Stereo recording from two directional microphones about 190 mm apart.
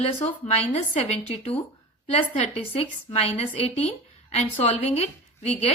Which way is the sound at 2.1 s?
30° left (ahead or behind).